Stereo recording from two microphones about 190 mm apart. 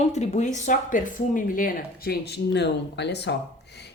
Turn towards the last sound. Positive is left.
turn(degrees=65)  # may be behind; listen again after turning